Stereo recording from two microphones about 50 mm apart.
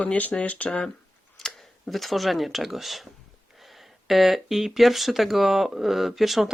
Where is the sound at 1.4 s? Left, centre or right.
Centre.